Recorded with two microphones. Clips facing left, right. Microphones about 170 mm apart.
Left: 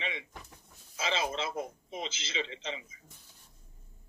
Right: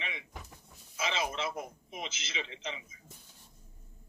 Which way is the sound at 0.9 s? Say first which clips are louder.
Left 1 dB; 30° left (ahead or behind).